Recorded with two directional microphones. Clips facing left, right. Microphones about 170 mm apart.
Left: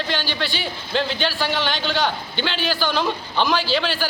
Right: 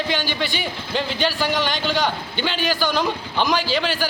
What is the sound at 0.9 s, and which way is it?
A man's voice, 5° right (ahead or behind).